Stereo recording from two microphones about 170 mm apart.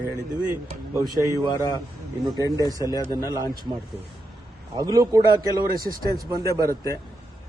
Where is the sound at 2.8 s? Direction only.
20° left (ahead or behind).